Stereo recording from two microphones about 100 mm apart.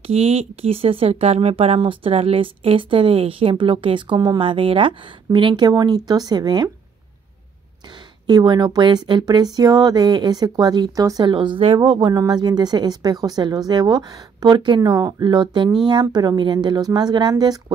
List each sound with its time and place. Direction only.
0.0 s speech: 90° right; by 6.7 s 45° right (ahead or behind)
8.3 s speech: 45° right (ahead or behind)
11.2 s speech: 55° right (ahead or behind)
11.8 s speech: 45° right (ahead or behind)